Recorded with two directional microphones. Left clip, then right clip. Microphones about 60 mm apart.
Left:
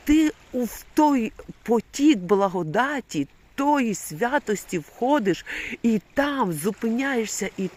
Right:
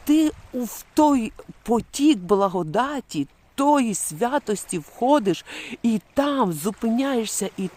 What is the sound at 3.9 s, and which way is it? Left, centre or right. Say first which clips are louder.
Speech: right 1 dB; right.